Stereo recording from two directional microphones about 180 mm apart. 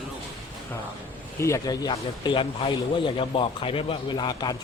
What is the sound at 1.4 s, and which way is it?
A man's voice, 20° left (ahead or behind).